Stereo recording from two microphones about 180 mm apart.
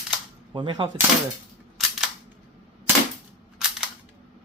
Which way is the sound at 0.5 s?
25° right (ahead or behind).